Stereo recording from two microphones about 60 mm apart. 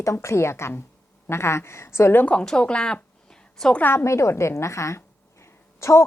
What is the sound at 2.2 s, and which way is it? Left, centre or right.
A woman's voice, left.